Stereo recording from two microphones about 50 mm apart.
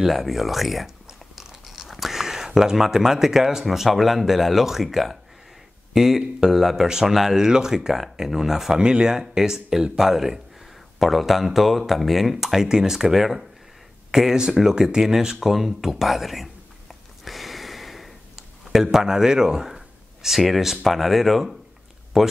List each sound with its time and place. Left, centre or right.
0.0 s speech: centre
8.7 s speech: centre
17.2 s a sound: centre
18.7 s speech: centre